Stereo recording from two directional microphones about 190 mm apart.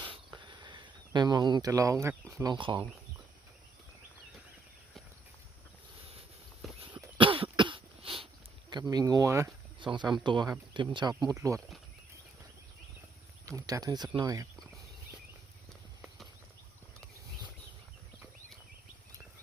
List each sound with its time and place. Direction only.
0.0 s a sound: 25° right (ahead or behind)
2.4 s speech: 25° right (ahead or behind)
6.9 s cough: 25° right (ahead or behind)
8.7 s speech: 20° right (ahead or behind)
13.6 s speech: 15° right (ahead or behind)
16.0 s clip-clop: centre (ahead or behind)